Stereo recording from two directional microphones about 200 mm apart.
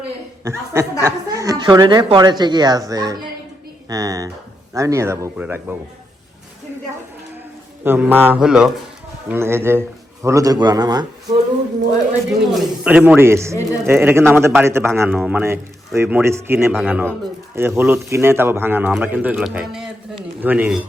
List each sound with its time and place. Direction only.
0.4 s a woman's voice: 10° right (ahead or behind)
7.9 s a woman's voice: 10° right (ahead or behind)
12.5 s speech: 5° right (ahead or behind)
16.7 s a man's voice: 5° left (ahead or behind)
17.5 s speech: 10° right (ahead or behind)